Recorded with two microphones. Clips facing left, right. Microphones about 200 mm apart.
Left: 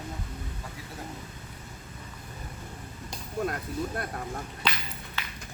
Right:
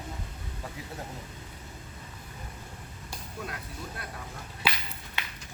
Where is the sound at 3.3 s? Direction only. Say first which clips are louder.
Left 10 dB; 50° left (ahead or behind).